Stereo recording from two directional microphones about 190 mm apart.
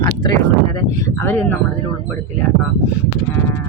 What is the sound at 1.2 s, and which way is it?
Speech, 10° left (ahead or behind).